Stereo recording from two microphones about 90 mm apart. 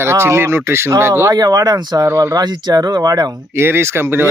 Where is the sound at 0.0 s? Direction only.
30° right (ahead or behind).